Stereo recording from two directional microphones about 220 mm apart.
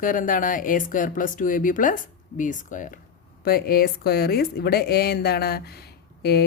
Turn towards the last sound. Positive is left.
turn(degrees=45)  # may be behind; listen again after turning